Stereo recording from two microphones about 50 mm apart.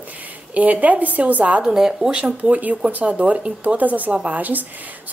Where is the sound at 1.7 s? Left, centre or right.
Centre.